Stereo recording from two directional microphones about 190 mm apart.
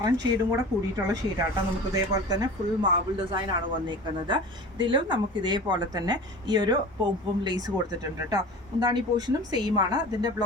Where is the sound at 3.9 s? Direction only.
25° right (ahead or behind).